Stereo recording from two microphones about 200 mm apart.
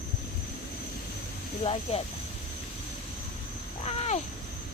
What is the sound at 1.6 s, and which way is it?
Speech, 30° left (ahead or behind).